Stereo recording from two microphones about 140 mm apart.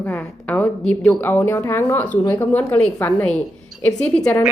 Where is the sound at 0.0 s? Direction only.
10° left (ahead or behind).